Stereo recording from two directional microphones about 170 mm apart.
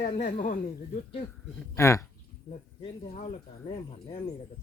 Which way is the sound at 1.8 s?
15° left (ahead or behind).